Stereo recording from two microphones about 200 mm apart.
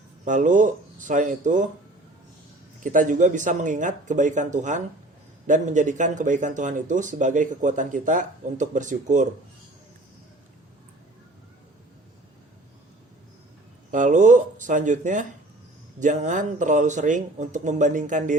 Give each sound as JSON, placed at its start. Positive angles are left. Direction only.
{"t": 0.3, "sound": "speech", "side_deg": -40}
{"t": 2.8, "sound": "speech", "side_deg": -40}
{"t": 13.9, "sound": "speech", "side_deg": -40}